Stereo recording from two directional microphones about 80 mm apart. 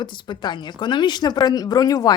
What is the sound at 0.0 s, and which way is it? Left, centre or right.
Speech, left.